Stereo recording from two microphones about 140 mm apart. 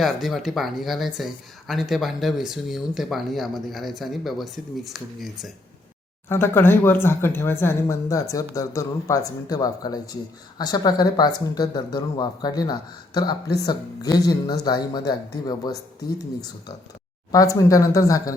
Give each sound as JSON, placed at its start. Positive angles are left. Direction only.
{"t": 0.0, "sound": "speech", "side_deg": 0}
{"t": 6.2, "sound": "speech", "side_deg": 15}
{"t": 17.3, "sound": "speech", "side_deg": 25}